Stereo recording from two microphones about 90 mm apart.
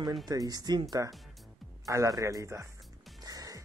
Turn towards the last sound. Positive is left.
turn(degrees=-45)  # may be behind; listen again after turning